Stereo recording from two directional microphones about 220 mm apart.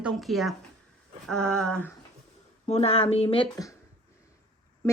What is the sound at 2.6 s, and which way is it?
Speech, 30° left (ahead or behind).